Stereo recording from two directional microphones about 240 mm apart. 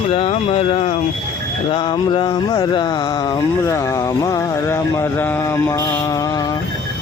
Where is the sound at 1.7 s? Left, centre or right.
Centre.